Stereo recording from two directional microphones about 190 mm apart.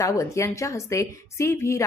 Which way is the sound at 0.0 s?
15° left (ahead or behind).